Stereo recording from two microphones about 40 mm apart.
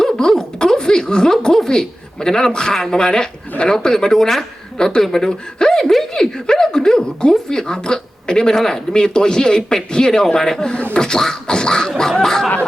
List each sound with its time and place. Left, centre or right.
0.0 s a sound: centre
1.5 s speech: centre
4.8 s speech: centre